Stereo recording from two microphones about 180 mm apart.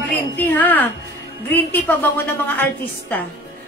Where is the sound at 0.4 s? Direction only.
10° left (ahead or behind).